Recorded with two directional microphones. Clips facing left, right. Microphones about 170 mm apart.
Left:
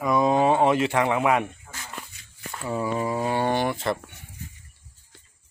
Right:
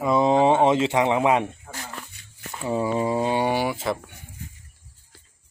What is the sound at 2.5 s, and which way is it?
Speech, 20° right (ahead or behind).